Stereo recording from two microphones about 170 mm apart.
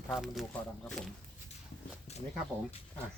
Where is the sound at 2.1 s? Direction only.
40° left (ahead or behind).